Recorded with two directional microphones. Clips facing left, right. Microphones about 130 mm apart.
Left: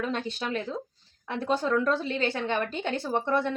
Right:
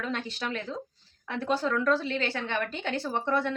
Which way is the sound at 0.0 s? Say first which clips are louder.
Left 2 dB; 25° left (ahead or behind).